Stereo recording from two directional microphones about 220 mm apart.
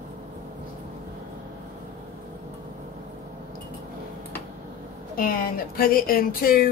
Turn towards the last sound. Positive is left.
turn(degrees=40)  # may be behind; listen again after turning